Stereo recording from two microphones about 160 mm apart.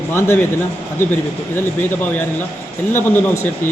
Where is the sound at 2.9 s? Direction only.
15° left (ahead or behind).